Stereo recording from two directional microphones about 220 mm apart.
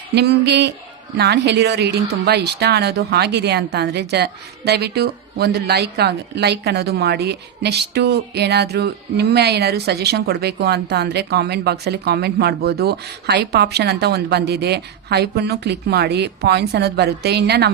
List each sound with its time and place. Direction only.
0.1 s speech: 50° right (ahead or behind)